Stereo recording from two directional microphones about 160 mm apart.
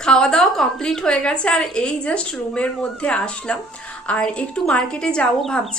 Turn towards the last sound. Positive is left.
turn(degrees=5)  # may be behind; listen again after turning